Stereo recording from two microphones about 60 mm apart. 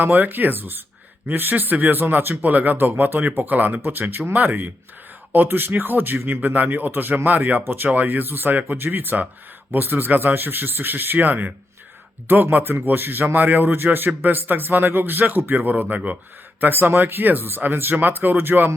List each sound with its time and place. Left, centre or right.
0.0 s speech: right
7.6 s speech: right
7.9 s speech: right